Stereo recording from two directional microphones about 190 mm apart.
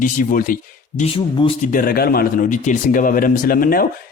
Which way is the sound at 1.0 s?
30° left (ahead or behind).